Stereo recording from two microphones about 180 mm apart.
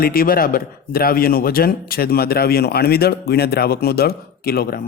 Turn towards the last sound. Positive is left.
turn(degrees=60)  # may be behind; listen again after turning